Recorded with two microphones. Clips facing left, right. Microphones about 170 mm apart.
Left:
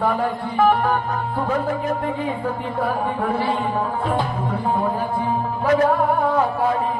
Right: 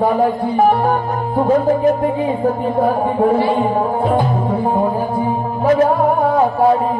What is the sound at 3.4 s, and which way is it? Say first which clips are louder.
Music: right 6 dB; 35° right (ahead or behind).